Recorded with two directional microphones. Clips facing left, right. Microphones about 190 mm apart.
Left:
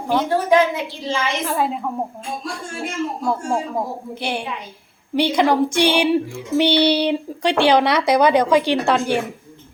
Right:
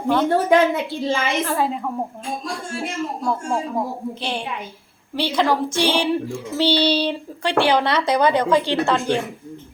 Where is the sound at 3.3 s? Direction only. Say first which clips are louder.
Even; 10° left (ahead or behind).